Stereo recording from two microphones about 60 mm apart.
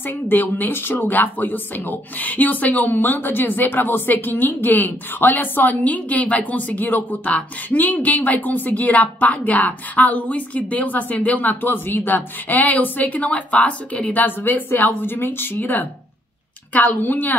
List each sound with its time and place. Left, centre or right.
0.0 s a woman's voice: left